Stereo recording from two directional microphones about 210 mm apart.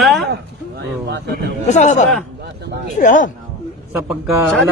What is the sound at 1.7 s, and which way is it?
Speech, 35° left (ahead or behind).